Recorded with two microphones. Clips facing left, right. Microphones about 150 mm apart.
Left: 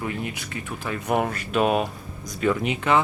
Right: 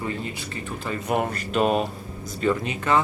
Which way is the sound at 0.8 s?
Centre (ahead or behind).